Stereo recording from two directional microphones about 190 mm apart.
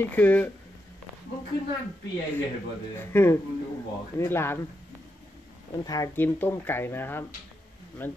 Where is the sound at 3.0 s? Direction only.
10° left (ahead or behind).